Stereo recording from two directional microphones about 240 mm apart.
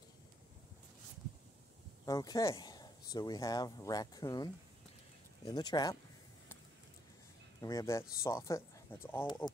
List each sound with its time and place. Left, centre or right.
2.0 s speech: centre
7.6 s speech: centre